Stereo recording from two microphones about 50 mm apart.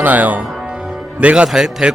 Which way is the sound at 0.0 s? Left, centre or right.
Right.